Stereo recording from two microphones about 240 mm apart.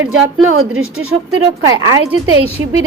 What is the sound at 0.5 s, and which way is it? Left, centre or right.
Speech, right.